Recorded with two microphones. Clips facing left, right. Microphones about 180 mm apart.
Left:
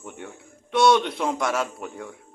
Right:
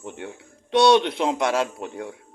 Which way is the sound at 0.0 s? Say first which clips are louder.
Right 3 dB; 25° right (ahead or behind).